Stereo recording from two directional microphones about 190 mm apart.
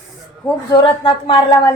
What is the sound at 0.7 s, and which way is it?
A woman's voice, 30° left (ahead or behind).